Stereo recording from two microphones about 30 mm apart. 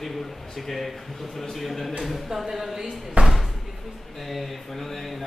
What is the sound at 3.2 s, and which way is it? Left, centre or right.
Speech, right.